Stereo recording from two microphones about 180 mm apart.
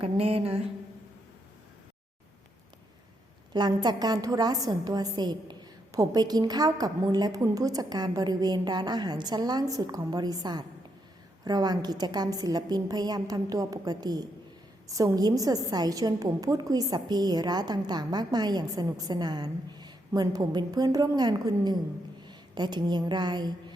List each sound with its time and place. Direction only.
0.0 s mantra: 35° right (ahead or behind)
3.5 s a woman's voice: 25° right (ahead or behind)